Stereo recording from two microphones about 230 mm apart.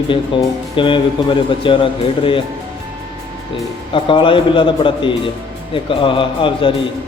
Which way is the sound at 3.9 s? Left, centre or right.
Left.